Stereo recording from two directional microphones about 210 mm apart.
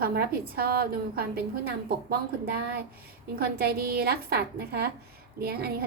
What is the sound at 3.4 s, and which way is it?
A woman's voice, 45° right (ahead or behind).